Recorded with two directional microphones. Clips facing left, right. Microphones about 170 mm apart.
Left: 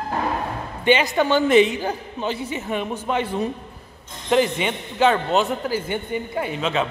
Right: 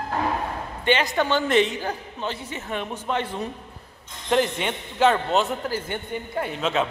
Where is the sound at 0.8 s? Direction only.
10° left (ahead or behind).